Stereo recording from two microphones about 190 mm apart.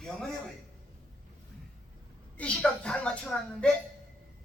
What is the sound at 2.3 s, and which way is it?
Speech, 5° left (ahead or behind).